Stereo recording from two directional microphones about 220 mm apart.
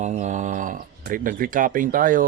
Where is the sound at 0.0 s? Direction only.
30° right (ahead or behind).